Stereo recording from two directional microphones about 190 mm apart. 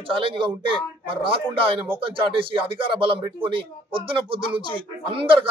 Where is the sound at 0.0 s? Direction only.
30° right (ahead or behind).